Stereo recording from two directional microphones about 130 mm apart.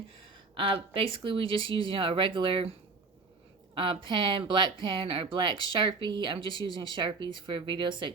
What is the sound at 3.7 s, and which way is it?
A woman's voice, 40° right (ahead or behind).